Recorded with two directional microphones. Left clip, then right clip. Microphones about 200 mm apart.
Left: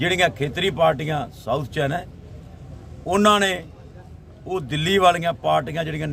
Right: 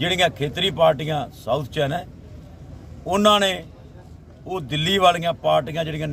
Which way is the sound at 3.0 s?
5° left (ahead or behind).